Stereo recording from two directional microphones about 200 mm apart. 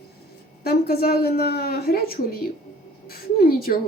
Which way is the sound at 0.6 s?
50° left (ahead or behind).